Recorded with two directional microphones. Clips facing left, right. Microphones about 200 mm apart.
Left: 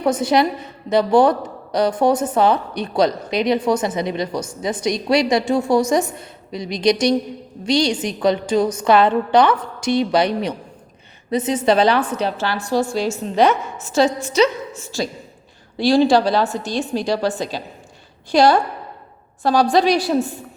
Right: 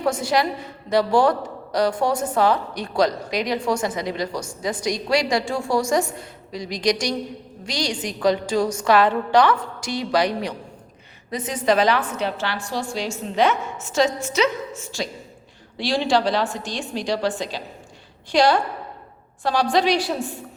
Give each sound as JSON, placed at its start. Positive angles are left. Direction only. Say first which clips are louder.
{"t": 0.0, "sound": "a woman's voice", "louder": "left 4 dB", "side_deg": 20}
{"t": 15.8, "sound": "a woman's voice", "louder": "left 6 dB", "side_deg": 40}